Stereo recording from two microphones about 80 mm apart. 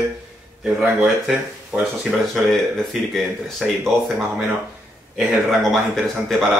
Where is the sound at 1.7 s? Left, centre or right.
Centre.